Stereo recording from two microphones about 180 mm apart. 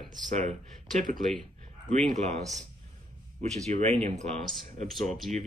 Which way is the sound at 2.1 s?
40° right (ahead or behind).